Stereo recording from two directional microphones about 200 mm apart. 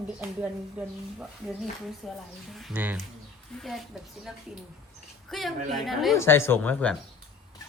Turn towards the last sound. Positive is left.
turn(degrees=5)  # may be behind; listen again after turning